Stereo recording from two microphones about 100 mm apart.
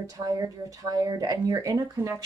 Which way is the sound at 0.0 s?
35° right (ahead or behind).